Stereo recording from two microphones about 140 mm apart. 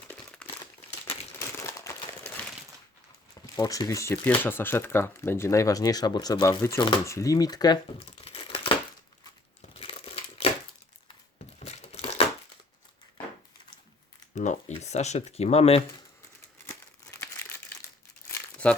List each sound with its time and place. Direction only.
0.1 s crumpling: 10° left (ahead or behind)
1.0 s crumpling: 45° left (ahead or behind)
1.4 s crumpling: 20° left (ahead or behind)
3.4 s speech: 25° left (ahead or behind)
6.4 s speech: 20° left (ahead or behind)
8.2 s crumpling: 40° left (ahead or behind)
11.6 s crumpling: 50° left (ahead or behind)
14.3 s a sound: 55° left (ahead or behind)
16.6 s crumpling: 20° left (ahead or behind)